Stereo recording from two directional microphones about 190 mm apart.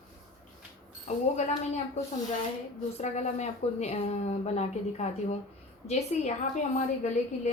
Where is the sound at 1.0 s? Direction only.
40° left (ahead or behind).